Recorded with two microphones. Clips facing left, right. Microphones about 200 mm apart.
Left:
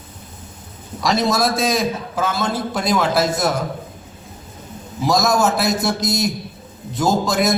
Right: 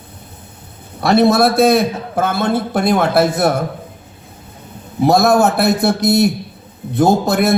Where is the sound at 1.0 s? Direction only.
60° right (ahead or behind).